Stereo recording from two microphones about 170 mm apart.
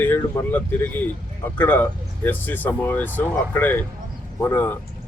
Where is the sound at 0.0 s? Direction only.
15° left (ahead or behind).